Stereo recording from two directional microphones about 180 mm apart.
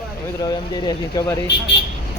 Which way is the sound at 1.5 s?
70° left (ahead or behind).